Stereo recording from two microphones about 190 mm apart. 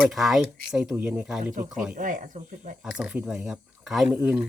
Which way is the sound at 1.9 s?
45° right (ahead or behind).